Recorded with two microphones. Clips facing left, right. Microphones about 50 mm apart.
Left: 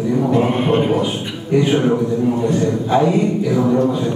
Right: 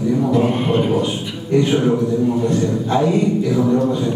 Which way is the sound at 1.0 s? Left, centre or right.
Centre.